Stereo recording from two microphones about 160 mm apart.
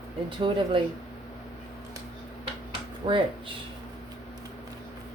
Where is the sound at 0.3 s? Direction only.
30° right (ahead or behind).